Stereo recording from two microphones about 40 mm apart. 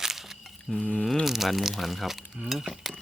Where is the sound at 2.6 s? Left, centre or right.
Centre.